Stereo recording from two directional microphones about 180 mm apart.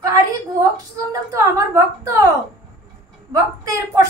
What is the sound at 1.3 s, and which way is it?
Speech, 20° right (ahead or behind).